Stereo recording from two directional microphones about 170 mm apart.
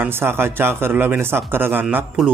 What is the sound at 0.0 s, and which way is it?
A man's voice, 15° right (ahead or behind).